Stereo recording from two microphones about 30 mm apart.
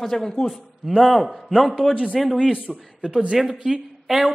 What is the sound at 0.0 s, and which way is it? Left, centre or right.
Speech, centre.